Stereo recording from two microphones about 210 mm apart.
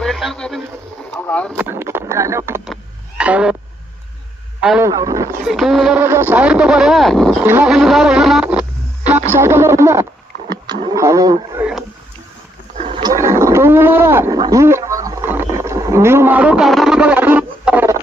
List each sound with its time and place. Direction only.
0.0 s radio: centre (ahead or behind)
1.3 s speech: 5° left (ahead or behind)
1.5 s speech: 10° right (ahead or behind)
3.2 s a sound: 5° right (ahead or behind)
4.8 s speech: 15° right (ahead or behind)
5.5 s speech: centre (ahead or behind)
12.7 s a sound: 25° right (ahead or behind); by 17.9 s 10° right (ahead or behind)